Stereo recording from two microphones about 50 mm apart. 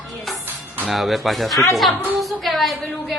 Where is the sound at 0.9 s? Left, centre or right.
Centre.